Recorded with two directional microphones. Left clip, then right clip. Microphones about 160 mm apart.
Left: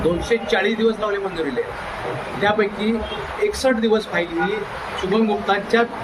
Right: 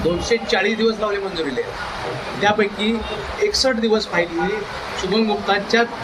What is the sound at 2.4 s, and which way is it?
A man's voice, 25° left (ahead or behind).